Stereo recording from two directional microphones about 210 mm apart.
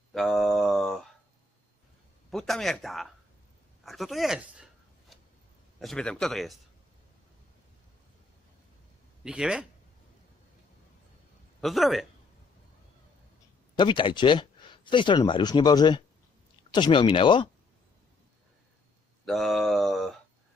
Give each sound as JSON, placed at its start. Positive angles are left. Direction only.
{"t": 0.1, "sound": "mantra", "side_deg": 0}
{"t": 2.3, "sound": "speech", "side_deg": 0}
{"t": 5.8, "sound": "speech", "side_deg": 0}
{"t": 9.2, "sound": "speech", "side_deg": -5}
{"t": 11.6, "sound": "speech", "side_deg": 0}
{"t": 13.7, "sound": "speech", "side_deg": 20}
{"t": 19.2, "sound": "a sound", "side_deg": 0}